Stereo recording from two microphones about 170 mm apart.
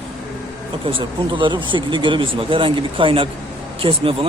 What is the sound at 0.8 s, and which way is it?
Speech, 30° right (ahead or behind).